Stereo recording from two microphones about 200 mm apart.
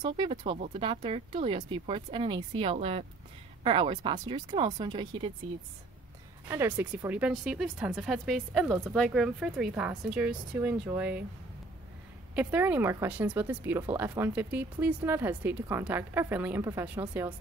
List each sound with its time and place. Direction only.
0.0 s speech: 25° right (ahead or behind)
6.5 s speech: 10° right (ahead or behind)
12.4 s speech: 5° right (ahead or behind)